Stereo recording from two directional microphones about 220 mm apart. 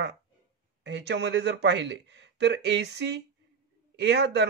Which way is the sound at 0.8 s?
50° right (ahead or behind).